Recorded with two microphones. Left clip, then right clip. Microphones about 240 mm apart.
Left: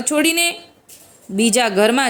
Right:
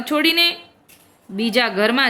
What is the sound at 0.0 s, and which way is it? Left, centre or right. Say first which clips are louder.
A woman's voice: even; centre.